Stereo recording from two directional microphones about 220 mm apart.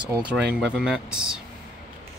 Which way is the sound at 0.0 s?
20° right (ahead or behind).